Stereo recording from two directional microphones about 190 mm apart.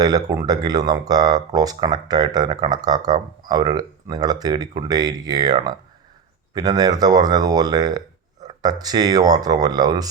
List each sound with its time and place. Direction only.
0.0 s speech: 20° right (ahead or behind)